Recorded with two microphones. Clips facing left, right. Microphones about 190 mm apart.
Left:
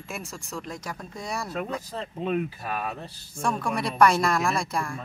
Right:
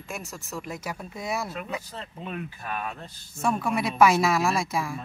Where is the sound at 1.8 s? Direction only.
40° left (ahead or behind).